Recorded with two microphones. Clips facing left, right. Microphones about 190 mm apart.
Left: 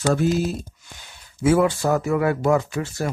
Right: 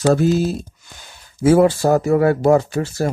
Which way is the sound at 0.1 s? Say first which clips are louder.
Right 3 dB; 35° right (ahead or behind).